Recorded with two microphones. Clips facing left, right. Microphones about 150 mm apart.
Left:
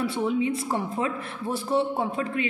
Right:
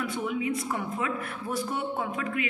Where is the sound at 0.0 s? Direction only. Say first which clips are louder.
Left 5 dB; 30° left (ahead or behind).